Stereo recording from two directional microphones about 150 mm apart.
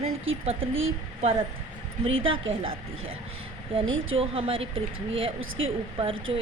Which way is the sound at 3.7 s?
40° right (ahead or behind).